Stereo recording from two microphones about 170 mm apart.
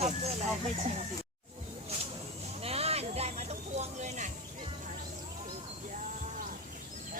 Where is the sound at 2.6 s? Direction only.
35° right (ahead or behind).